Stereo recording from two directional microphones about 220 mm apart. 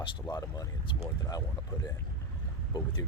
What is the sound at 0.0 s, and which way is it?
Speech, 20° left (ahead or behind).